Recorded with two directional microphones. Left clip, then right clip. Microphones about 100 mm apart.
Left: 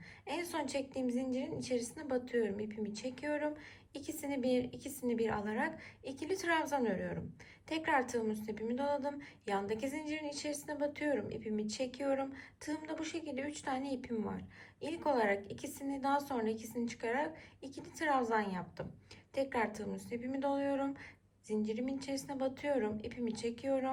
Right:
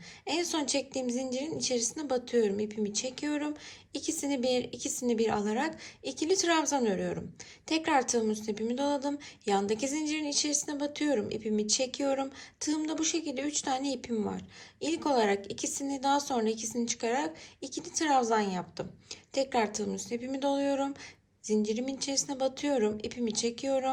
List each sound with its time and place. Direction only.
0.3 s a woman's voice: 15° right (ahead or behind)